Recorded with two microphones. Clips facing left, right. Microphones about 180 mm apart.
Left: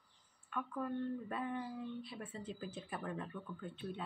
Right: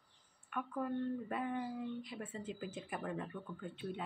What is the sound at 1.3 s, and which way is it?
Speech, 15° right (ahead or behind).